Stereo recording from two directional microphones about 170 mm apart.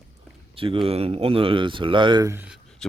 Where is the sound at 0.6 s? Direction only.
30° right (ahead or behind).